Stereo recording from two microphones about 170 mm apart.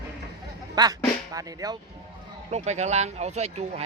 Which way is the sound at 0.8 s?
20° right (ahead or behind).